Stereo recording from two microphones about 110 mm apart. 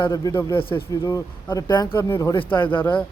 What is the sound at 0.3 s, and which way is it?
Speech, 20° left (ahead or behind).